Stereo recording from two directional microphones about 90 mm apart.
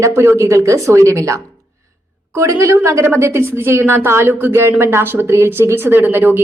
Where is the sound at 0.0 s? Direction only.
30° right (ahead or behind).